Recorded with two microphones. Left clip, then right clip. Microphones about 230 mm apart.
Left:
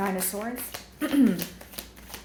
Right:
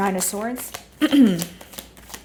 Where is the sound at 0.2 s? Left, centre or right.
Right.